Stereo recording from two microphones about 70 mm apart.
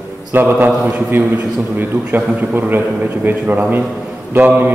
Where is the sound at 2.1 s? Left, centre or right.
Right.